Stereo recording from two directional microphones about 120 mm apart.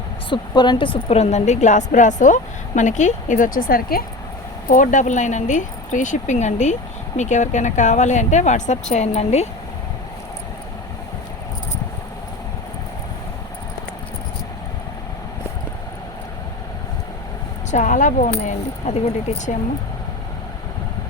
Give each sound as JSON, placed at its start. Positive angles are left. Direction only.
{"t": 0.3, "sound": "a woman's voice", "side_deg": 40}
{"t": 4.7, "sound": "a woman's voice", "side_deg": 90}
{"t": 17.7, "sound": "speech", "side_deg": 90}